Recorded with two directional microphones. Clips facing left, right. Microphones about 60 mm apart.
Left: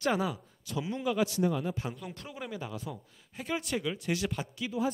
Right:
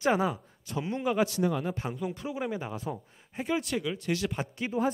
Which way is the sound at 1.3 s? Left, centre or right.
Right.